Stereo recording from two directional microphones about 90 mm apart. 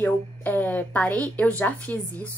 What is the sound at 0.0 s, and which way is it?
A woman's voice, 20° left (ahead or behind).